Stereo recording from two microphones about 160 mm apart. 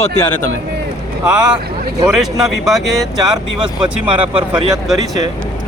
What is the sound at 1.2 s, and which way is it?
Speech, 5° right (ahead or behind).